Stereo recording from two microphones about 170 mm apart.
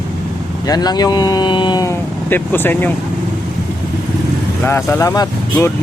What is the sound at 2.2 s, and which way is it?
Speech, 10° left (ahead or behind).